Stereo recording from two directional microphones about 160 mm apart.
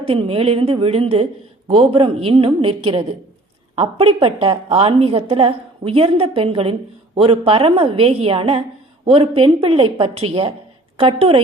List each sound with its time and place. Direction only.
0.0 s a woman's voice: 35° right (ahead or behind)